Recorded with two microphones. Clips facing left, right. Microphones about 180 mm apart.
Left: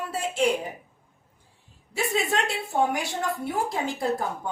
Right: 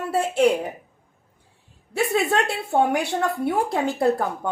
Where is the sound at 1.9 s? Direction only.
60° right (ahead or behind).